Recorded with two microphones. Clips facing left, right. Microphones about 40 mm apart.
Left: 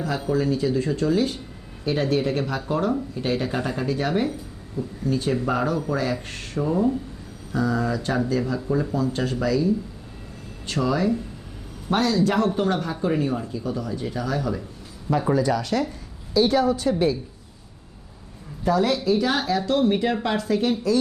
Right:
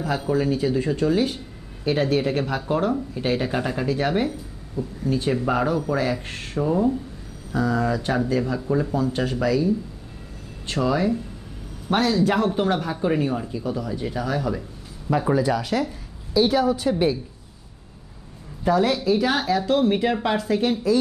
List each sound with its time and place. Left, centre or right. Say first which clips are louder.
0.0 s speech: right 1 dB; centre
18.6 s speech: right 1 dB; centre